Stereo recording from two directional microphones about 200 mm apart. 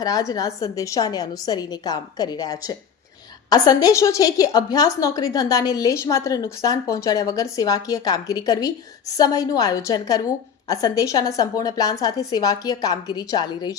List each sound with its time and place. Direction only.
0.0 s a woman's voice: 20° left (ahead or behind)